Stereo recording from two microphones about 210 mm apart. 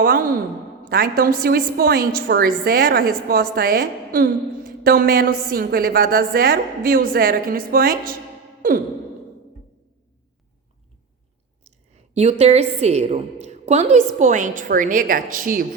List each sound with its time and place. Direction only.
0.0 s a woman's voice: 45° right (ahead or behind)
11.6 s a woman's voice: 30° right (ahead or behind)